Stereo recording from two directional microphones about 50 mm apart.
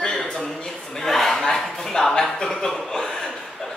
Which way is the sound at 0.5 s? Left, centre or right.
Centre.